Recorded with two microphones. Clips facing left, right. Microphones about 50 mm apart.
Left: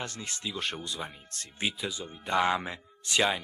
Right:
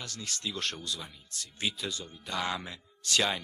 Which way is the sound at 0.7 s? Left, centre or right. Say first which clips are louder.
Left 3 dB; left.